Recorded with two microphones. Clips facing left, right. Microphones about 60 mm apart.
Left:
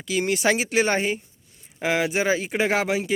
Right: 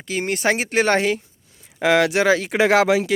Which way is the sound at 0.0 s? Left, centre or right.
Right.